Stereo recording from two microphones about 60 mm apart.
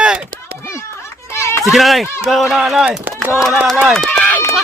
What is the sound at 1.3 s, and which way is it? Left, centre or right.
Children playing, left.